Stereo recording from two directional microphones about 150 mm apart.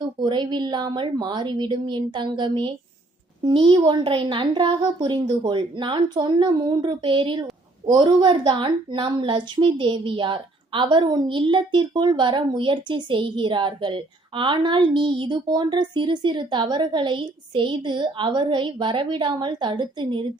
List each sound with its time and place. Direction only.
0.0 s a woman's voice: 30° right (ahead or behind)